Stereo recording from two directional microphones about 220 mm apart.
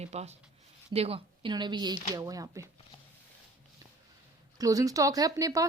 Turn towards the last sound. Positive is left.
turn(degrees=-15)  # may be behind; listen again after turning